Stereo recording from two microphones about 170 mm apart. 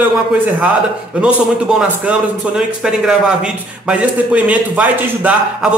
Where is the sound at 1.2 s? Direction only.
5° right (ahead or behind).